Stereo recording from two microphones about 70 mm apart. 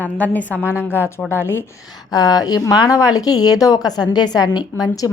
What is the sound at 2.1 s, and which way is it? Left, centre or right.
A woman's voice, left.